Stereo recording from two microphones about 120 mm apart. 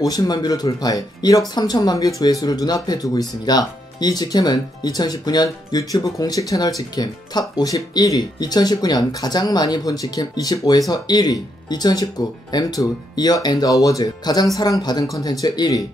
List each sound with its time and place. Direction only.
0.0 s speech: 30° left (ahead or behind)